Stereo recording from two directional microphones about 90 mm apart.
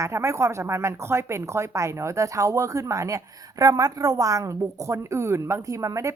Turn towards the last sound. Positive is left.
turn(degrees=-35)  # may be behind; listen again after turning